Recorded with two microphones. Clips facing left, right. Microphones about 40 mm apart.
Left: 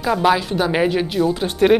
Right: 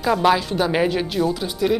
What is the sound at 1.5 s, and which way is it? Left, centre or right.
Speech, left.